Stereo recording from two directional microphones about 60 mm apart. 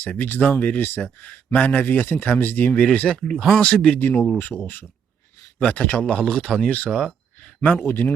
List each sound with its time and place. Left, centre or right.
0.2 s speech: left
2.8 s speech: centre
3.2 s speech: centre
3.6 s speech: centre
4.4 s speech: left
5.5 s speech: left
6.7 s speech: left
6.9 s a sound: centre
7.6 s speech: left